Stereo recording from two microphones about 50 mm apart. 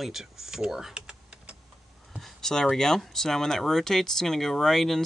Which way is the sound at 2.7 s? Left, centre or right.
Centre.